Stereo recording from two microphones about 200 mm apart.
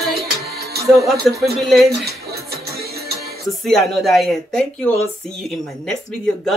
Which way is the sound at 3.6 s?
Centre (ahead or behind).